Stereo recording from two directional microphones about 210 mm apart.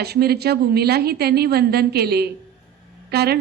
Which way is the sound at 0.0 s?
50° right (ahead or behind).